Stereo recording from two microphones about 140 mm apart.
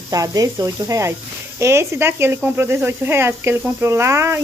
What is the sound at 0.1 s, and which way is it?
Speech, 25° right (ahead or behind).